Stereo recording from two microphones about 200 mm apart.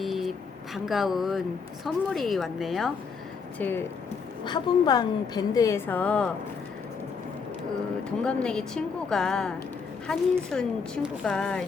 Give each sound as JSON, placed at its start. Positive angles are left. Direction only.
{"t": 0.0, "sound": "a woman's voice", "side_deg": 0}
{"t": 4.4, "sound": "a woman's voice", "side_deg": 20}
{"t": 8.2, "sound": "a woman's voice", "side_deg": 5}